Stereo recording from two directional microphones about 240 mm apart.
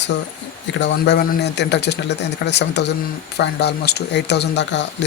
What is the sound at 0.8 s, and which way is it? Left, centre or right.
Speech, left.